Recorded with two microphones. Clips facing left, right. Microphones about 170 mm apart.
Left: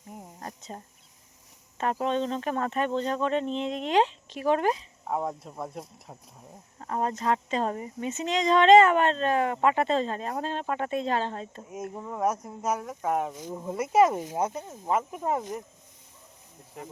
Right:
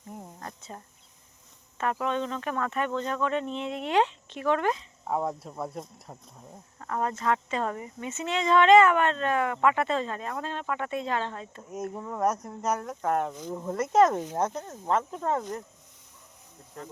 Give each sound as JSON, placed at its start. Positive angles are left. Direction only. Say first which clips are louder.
{"t": 1.8, "sound": "speech", "louder": "left 2 dB", "side_deg": 25}
{"t": 5.0, "sound": "speech", "louder": "right 1 dB", "side_deg": 0}
{"t": 6.7, "sound": "speech", "louder": "left 1 dB", "side_deg": 25}
{"t": 8.2, "sound": "speech", "louder": "even", "side_deg": 20}
{"t": 11.9, "sound": "speech", "louder": "even", "side_deg": 5}
{"t": 13.3, "sound": "speech", "louder": "right 1 dB", "side_deg": 15}